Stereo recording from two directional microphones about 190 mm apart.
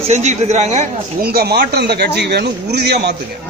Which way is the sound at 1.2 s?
55° right (ahead or behind).